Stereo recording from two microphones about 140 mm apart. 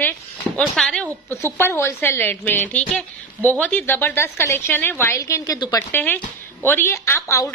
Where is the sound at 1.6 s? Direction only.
15° left (ahead or behind).